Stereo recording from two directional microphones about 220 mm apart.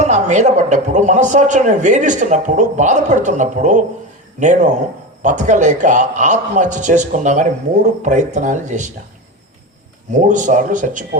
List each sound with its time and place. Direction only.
0.0 s a man's voice: 30° right (ahead or behind)
10.1 s a man's voice: 35° right (ahead or behind)